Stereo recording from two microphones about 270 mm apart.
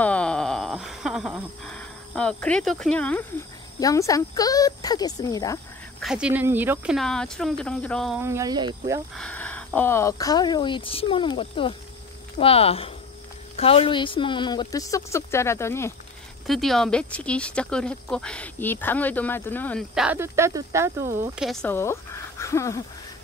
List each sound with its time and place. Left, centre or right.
0.0 s wail: centre
3.8 s speech: centre
6.0 s speech: centre
9.1 s speech: centre
21.4 s speech: centre
22.4 s a sound: centre